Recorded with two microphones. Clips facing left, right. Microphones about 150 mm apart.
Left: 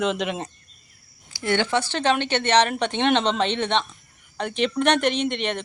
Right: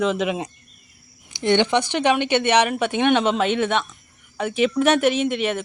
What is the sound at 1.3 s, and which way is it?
Speech, 20° right (ahead or behind).